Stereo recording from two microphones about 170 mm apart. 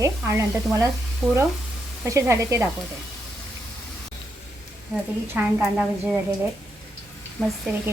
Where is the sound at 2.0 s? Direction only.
20° right (ahead or behind).